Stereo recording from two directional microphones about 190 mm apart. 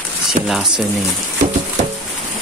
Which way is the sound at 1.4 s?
40° right (ahead or behind).